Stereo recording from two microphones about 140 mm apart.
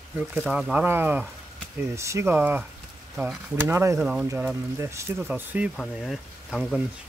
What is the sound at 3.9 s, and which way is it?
Speech, 5° right (ahead or behind).